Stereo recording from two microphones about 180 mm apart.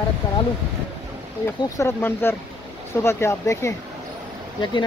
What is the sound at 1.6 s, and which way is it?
Speech, 15° left (ahead or behind).